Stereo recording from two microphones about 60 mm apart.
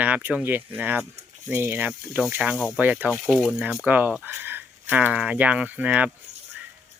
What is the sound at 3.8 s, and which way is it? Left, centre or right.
Speech, right.